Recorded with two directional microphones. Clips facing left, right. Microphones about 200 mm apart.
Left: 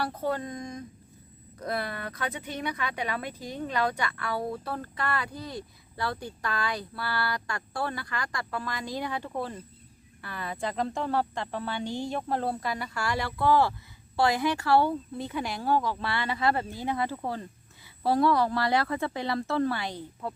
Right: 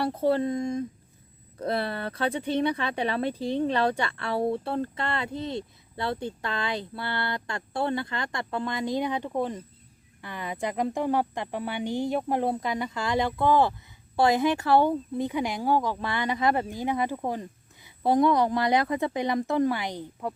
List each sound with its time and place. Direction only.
0.0 s speech: 25° right (ahead or behind)